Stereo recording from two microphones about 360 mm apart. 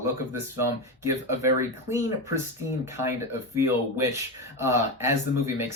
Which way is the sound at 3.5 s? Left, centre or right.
Centre.